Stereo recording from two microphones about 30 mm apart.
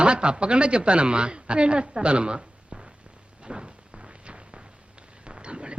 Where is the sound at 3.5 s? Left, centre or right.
Right.